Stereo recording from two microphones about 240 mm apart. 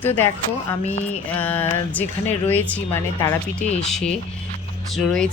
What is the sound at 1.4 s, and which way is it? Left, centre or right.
Speech, centre.